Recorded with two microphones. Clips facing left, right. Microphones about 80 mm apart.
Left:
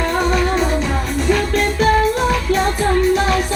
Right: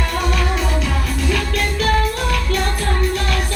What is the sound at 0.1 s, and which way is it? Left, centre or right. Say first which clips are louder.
Music: left 4 dB; left.